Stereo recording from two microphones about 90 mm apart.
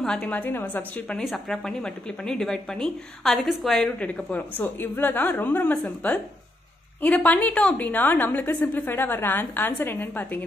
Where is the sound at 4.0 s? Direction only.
15° left (ahead or behind).